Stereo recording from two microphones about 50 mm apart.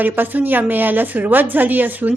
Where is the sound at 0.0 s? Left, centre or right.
Right.